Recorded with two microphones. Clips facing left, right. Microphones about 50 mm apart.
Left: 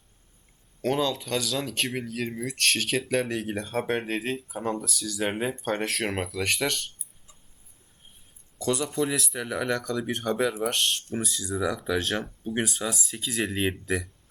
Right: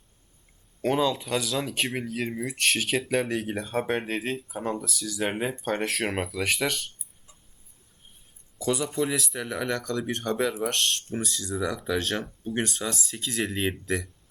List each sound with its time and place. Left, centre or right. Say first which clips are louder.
0.8 s speech: right 2 dB; centre
8.5 s speech: even; centre